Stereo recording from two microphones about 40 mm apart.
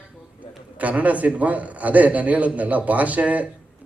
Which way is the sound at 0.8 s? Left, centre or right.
Right.